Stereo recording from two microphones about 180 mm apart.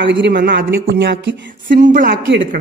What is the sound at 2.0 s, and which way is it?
Speech, 65° right (ahead or behind).